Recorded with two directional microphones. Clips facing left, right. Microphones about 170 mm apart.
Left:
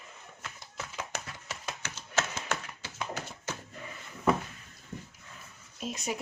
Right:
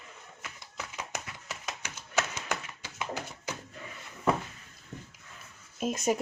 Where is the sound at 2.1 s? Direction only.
15° right (ahead or behind).